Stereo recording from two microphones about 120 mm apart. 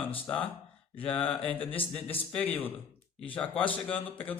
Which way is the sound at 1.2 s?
15° left (ahead or behind).